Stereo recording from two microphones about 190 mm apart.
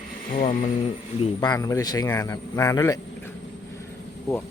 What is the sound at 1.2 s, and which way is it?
Speech, 20° left (ahead or behind).